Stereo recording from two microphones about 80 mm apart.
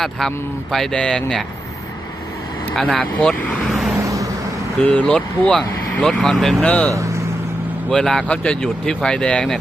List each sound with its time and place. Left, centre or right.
0.0 s speech: centre
3.0 s speech: centre
3.7 s vehicle: centre
3.9 s vehicle: right
4.9 s speech: centre